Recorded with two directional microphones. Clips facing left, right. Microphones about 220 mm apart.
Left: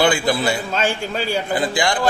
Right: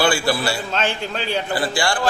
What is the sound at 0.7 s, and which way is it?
Speech, 10° left (ahead or behind).